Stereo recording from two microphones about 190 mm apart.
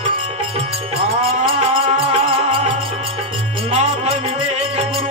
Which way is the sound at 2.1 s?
30° right (ahead or behind).